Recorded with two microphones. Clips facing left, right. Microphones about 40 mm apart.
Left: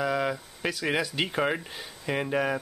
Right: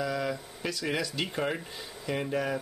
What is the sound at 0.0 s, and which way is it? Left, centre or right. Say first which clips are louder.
Speech: left 4 dB; left.